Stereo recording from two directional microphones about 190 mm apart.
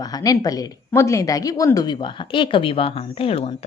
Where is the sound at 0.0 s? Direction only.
20° left (ahead or behind).